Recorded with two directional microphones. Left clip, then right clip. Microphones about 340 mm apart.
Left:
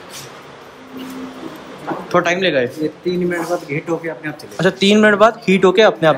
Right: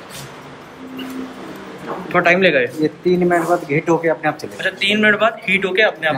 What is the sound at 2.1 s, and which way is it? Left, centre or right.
A man's voice, centre.